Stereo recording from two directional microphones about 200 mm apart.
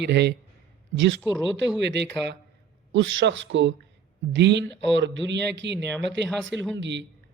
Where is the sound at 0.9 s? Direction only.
70° right (ahead or behind).